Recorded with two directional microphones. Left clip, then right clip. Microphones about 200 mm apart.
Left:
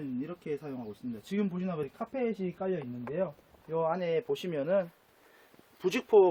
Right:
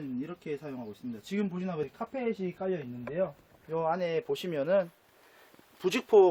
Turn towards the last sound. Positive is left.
turn(degrees=-20)  # may be behind; listen again after turning